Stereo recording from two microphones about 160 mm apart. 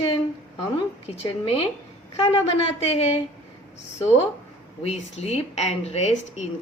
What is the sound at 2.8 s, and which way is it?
Speech, 40° left (ahead or behind).